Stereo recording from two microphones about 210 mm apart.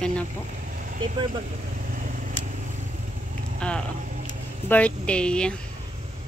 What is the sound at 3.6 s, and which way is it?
A woman's voice, 5° left (ahead or behind).